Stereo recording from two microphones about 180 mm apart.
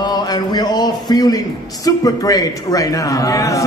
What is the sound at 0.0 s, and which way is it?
A man's voice, 20° left (ahead or behind).